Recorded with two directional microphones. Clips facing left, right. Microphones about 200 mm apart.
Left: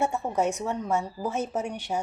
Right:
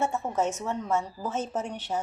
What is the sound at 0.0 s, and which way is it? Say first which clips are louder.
A woman's voice: left 2 dB; 15° left (ahead or behind).